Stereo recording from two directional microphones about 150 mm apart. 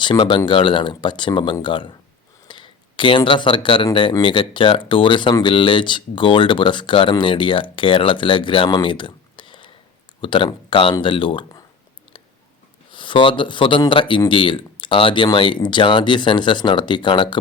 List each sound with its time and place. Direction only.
0.0 s speech: 30° left (ahead or behind)
12.9 s speech: 35° left (ahead or behind)